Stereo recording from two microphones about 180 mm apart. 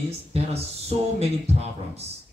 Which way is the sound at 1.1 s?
35° right (ahead or behind).